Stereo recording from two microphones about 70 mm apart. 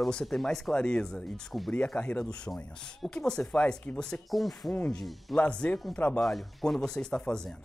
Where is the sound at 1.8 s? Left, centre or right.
Centre.